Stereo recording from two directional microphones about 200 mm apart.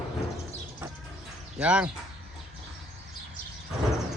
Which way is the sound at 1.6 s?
5° right (ahead or behind).